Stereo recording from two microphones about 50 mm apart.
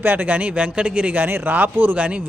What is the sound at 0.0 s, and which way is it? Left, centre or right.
Speech, right.